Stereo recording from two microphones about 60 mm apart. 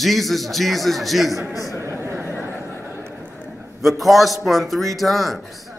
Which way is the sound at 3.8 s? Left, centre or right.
Centre.